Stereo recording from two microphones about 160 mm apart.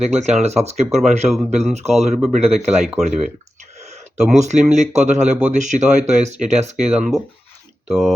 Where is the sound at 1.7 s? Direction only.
45° right (ahead or behind).